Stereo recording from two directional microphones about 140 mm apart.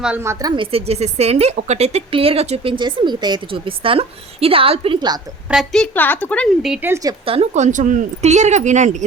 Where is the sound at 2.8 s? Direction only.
30° right (ahead or behind).